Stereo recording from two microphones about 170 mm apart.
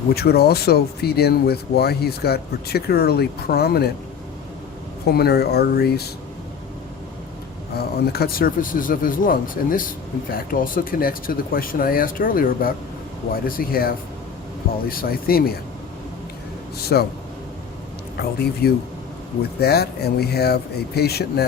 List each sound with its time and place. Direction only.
0.1 s speech: 70° left (ahead or behind)
5.0 s speech: 70° left (ahead or behind)
7.8 s speech: 70° left (ahead or behind)
16.7 s speech: 70° left (ahead or behind)
18.2 s speech: 70° left (ahead or behind)